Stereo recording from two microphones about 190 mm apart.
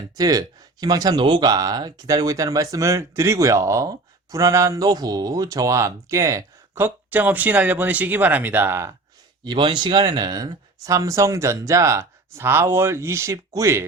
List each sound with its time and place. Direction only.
0.2 s speech: 20° right (ahead or behind)
9.4 s speech: 25° right (ahead or behind)